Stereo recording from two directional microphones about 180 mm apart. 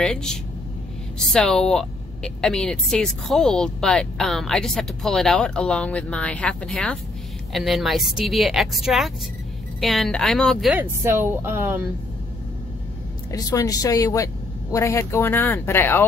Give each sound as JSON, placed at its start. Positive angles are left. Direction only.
{"t": 0.0, "sound": "speech", "side_deg": 5}
{"t": 10.8, "sound": "a woman's voice", "side_deg": -15}
{"t": 13.3, "sound": "speech", "side_deg": 20}